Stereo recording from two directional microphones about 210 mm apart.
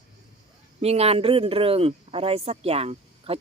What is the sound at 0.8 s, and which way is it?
Speech, 30° right (ahead or behind).